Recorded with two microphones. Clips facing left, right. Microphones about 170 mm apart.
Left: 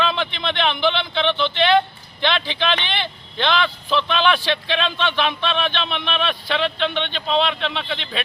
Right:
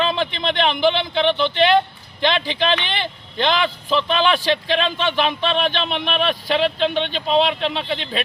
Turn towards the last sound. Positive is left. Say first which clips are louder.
# right 3 dB
turn(degrees=-40)  # may be behind; listen again after turning